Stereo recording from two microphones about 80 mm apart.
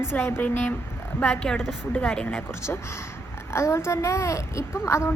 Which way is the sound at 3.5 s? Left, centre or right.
Left.